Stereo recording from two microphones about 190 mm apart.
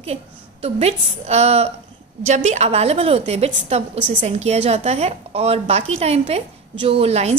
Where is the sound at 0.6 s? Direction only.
35° right (ahead or behind).